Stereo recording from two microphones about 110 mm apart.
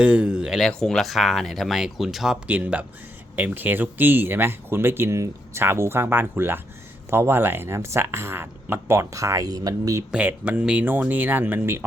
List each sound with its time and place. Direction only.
0.0 s speech: 10° right (ahead or behind); by 10.0 s 35° right (ahead or behind)
10.1 s speech: 15° right (ahead or behind)